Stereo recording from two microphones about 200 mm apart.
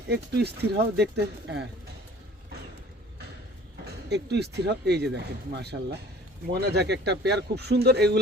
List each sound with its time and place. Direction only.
0.1 s speech: 55° right (ahead or behind)
4.1 s speech: 55° right (ahead or behind)